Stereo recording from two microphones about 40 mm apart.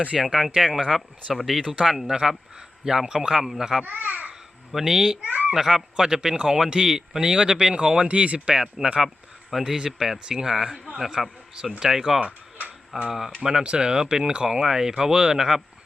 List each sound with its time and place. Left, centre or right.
0.1 s a man's voice: centre
3.8 s speech: right
4.7 s speech: centre
5.2 s a child's voice: right
5.5 s speech: centre
8.0 s speech: right
8.5 s speech: right
9.5 s speech: centre
12.2 s tick-tock: right
13.1 s speech: centre
13.4 s speech: centre